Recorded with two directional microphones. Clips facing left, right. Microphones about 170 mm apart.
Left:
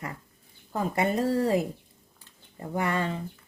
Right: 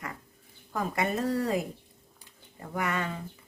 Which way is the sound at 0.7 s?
30° left (ahead or behind).